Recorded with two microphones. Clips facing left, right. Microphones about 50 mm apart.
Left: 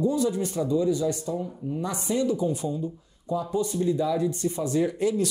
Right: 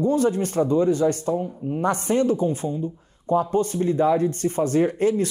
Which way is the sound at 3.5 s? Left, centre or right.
Right.